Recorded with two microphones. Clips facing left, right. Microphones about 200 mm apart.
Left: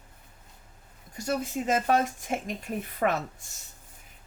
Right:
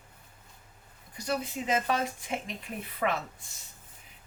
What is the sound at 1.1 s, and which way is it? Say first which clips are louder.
Speech: left 3 dB; 45° left (ahead or behind).